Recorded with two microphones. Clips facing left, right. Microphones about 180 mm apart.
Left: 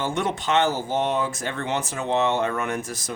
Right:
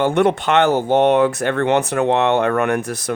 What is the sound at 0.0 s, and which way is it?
Speech, 60° right (ahead or behind).